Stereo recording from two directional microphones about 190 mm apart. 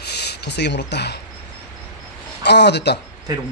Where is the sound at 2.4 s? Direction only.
65° left (ahead or behind).